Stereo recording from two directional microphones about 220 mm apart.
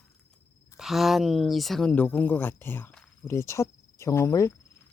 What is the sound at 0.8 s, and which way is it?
Speech, centre (ahead or behind).